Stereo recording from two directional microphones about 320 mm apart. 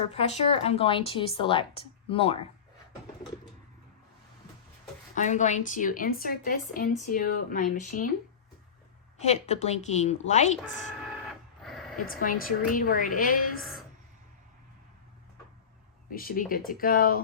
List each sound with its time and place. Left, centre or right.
0.1 s speech: centre
5.1 s a woman's voice: left
9.1 s a woman's voice: left
11.6 s a sound: centre
12.2 s a woman's voice: left
13.6 s speech: centre
16.0 s a woman's voice: left